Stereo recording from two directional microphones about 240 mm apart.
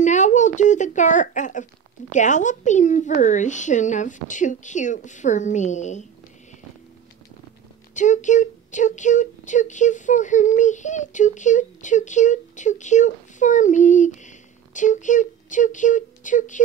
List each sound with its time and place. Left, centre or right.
0.0 s speech: left
7.9 s speech: left